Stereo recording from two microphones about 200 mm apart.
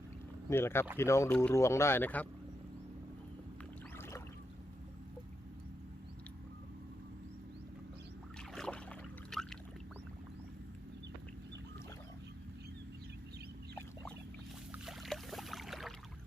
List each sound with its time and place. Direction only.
0.5 s speech: 10° left (ahead or behind)
3.9 s rowboat: 10° left (ahead or behind)
8.4 s boat: 5° left (ahead or behind)
14.7 s boat: centre (ahead or behind)